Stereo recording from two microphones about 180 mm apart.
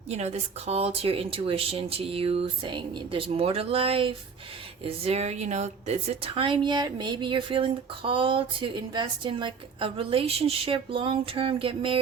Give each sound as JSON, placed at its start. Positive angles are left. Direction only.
{"t": 0.1, "sound": "a woman's voice", "side_deg": -40}